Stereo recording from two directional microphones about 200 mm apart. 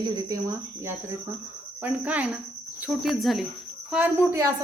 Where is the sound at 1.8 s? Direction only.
5° right (ahead or behind).